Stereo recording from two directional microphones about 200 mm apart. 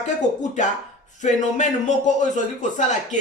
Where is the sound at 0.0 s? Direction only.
35° left (ahead or behind).